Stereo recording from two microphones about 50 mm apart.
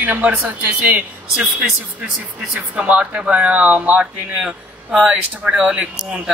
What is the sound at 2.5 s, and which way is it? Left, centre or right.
Speech, right.